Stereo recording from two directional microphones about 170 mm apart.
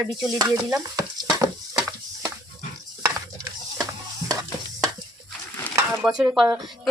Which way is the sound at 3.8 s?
20° right (ahead or behind).